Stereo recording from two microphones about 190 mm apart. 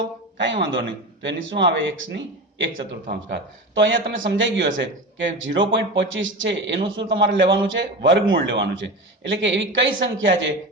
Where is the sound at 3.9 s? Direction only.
75° right (ahead or behind).